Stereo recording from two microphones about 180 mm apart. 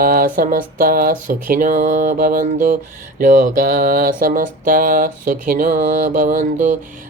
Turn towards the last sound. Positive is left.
turn(degrees=-45)  # may be behind; listen again after turning